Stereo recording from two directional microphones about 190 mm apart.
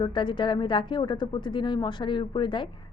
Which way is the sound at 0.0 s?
25° left (ahead or behind).